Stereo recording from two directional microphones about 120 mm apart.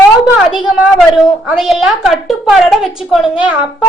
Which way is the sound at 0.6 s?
5° right (ahead or behind).